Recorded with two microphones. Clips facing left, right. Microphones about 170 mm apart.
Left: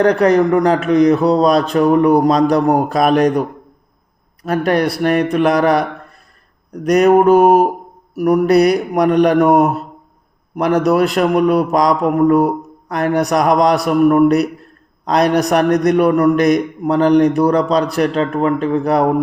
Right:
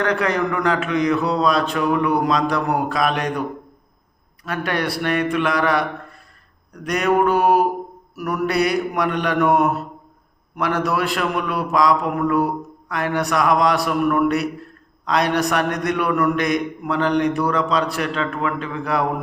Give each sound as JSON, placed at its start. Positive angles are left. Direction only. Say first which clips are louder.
{"t": 0.0, "sound": "a man's voice", "louder": "left 9 dB", "side_deg": 40}
{"t": 4.4, "sound": "a man's voice", "louder": "left 8 dB", "side_deg": 40}
{"t": 6.8, "sound": "a man's voice", "louder": "left 8 dB", "side_deg": 40}